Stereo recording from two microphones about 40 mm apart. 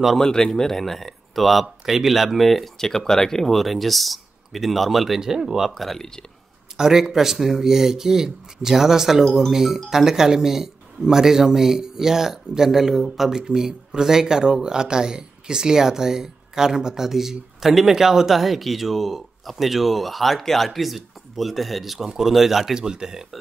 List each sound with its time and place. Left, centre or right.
0.2 s speech: centre
5.8 s speech: centre
6.8 s speech: centre
22.8 s speech: centre